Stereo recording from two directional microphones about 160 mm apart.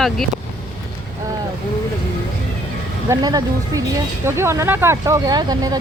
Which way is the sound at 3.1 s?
20° right (ahead or behind).